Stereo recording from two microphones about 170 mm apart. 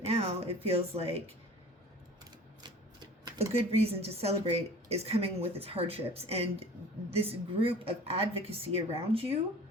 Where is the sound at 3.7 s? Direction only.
35° right (ahead or behind).